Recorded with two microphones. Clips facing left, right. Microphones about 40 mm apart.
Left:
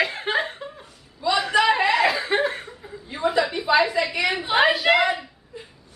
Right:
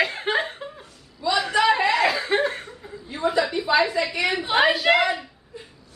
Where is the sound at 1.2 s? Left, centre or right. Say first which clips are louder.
Left 1 dB; centre.